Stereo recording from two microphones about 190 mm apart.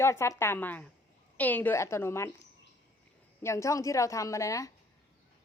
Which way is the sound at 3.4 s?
15° left (ahead or behind).